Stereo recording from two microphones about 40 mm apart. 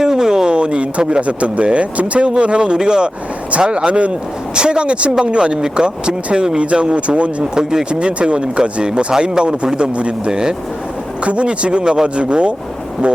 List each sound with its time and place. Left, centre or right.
0.0 s speech: centre; by 7.4 s right
7.5 s speech: centre
7.9 s speech: right